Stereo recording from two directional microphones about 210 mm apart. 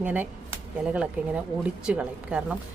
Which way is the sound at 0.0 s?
5° right (ahead or behind).